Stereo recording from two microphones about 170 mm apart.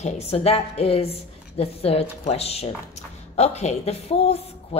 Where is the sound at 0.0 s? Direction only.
40° left (ahead or behind).